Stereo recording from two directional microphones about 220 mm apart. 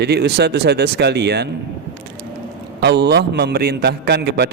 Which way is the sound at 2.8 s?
50° right (ahead or behind).